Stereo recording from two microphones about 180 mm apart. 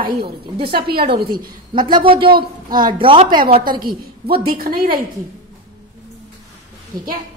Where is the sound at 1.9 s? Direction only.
30° right (ahead or behind).